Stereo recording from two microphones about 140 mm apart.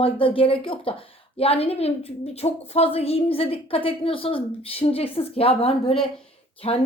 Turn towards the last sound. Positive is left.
turn(degrees=45)  # may be behind; listen again after turning